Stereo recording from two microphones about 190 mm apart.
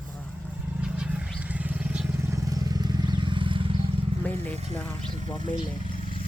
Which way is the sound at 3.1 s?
25° right (ahead or behind).